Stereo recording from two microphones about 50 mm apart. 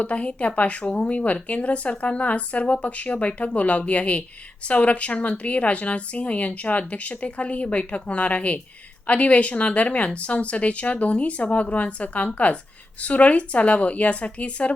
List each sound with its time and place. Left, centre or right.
0.0 s a woman's voice: left